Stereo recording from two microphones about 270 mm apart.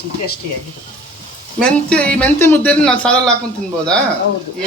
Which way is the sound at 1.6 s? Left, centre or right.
Centre.